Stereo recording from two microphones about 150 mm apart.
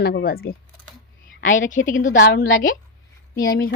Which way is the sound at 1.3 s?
60° left (ahead or behind).